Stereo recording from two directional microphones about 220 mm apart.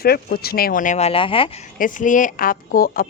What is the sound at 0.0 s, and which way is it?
Speech, 45° left (ahead or behind).